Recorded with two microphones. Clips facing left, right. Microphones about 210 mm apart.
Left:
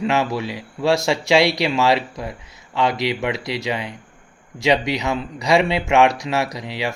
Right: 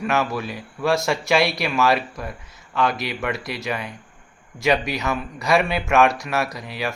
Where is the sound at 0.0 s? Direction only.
20° left (ahead or behind).